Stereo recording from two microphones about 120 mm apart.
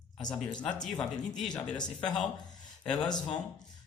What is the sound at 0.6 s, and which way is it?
Speech, 10° left (ahead or behind).